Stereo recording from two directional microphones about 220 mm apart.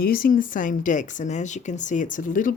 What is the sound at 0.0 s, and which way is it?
Speech, 40° left (ahead or behind).